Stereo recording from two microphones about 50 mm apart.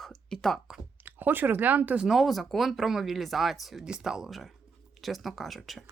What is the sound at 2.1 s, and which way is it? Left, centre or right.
Speech, centre.